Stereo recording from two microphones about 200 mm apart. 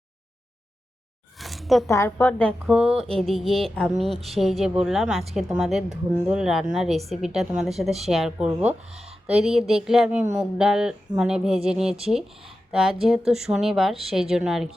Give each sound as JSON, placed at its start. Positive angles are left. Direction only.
{"t": 1.4, "sound": "a sound", "side_deg": 0}
{"t": 1.9, "sound": "a woman's voice", "side_deg": 10}
{"t": 8.9, "sound": "speech", "side_deg": -30}
{"t": 9.2, "sound": "a woman's voice", "side_deg": -5}
{"t": 12.5, "sound": "a sound", "side_deg": 0}
{"t": 13.1, "sound": "a woman's voice", "side_deg": 0}